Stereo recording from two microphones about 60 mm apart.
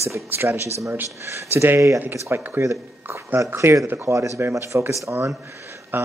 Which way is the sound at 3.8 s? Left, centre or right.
Right.